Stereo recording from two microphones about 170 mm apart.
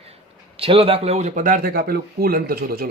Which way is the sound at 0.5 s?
35° right (ahead or behind).